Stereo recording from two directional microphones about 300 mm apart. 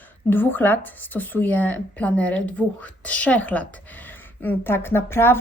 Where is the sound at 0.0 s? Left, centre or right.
Centre.